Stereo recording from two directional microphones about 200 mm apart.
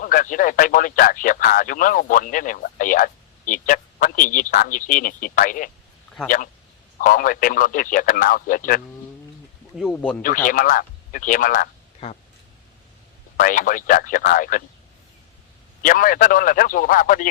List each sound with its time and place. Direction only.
0.0 s speech: 45° left (ahead or behind)
9.7 s speech: 5° left (ahead or behind)
10.2 s speech: 40° left (ahead or behind)
13.3 s speech: 40° left (ahead or behind)
15.8 s speech: 45° left (ahead or behind)